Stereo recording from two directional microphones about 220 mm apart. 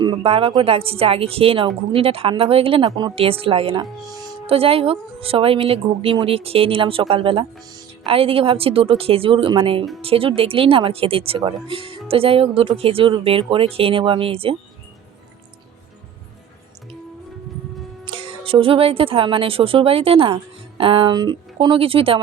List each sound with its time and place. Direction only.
0.0 s speech: 20° right (ahead or behind)
18.0 s speech: 25° right (ahead or behind)